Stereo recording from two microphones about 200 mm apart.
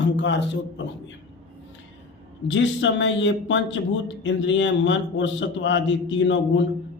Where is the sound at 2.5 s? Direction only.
65° left (ahead or behind).